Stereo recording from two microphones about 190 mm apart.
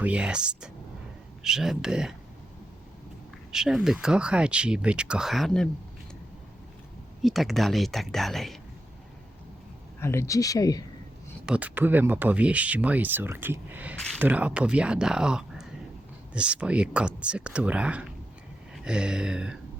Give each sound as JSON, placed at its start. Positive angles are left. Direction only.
{"t": 0.0, "sound": "speech", "side_deg": -5}
{"t": 3.5, "sound": "speech", "side_deg": 0}
{"t": 7.2, "sound": "speech", "side_deg": 0}
{"t": 10.0, "sound": "speech", "side_deg": 15}
{"t": 11.4, "sound": "speech", "side_deg": -5}